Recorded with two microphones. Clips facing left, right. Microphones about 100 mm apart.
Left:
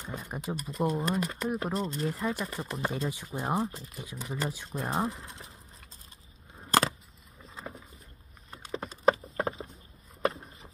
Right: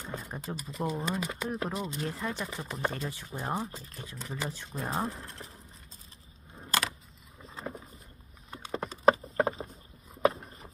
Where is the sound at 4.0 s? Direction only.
15° left (ahead or behind).